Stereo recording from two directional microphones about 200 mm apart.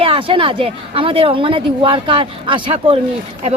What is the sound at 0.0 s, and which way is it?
Speech, 25° right (ahead or behind).